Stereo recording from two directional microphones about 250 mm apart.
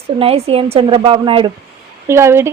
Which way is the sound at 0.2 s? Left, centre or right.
Right.